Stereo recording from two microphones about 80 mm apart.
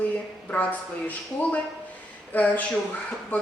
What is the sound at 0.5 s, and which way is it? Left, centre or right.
A woman's voice, centre.